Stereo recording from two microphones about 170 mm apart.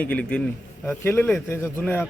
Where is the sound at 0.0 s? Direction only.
5° left (ahead or behind).